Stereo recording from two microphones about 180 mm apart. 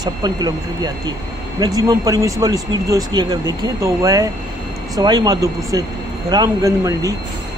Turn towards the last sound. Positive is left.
turn(degrees=-20)  # may be behind; listen again after turning